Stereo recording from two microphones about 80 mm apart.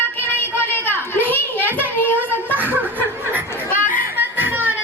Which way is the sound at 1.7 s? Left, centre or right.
Left.